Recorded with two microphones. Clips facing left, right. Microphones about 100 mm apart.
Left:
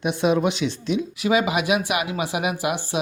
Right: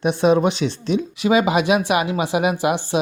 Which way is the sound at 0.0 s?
35° right (ahead or behind).